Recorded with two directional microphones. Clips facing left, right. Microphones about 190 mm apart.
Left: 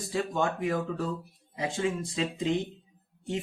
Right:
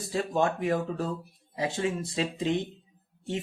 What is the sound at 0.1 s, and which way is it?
Speech, 35° right (ahead or behind).